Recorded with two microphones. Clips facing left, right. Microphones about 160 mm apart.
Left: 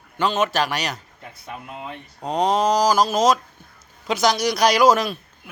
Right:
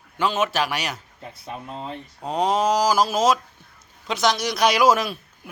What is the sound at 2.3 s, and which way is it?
Speech, 5° right (ahead or behind).